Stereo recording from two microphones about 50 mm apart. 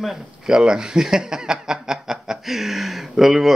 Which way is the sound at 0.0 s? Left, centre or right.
Centre.